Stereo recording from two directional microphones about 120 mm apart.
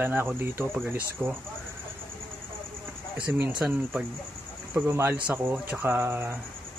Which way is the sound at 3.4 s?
10° right (ahead or behind).